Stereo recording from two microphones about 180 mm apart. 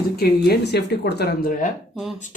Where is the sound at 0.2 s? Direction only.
60° left (ahead or behind).